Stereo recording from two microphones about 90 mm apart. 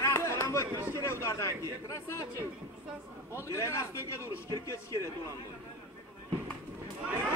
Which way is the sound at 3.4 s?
35° left (ahead or behind).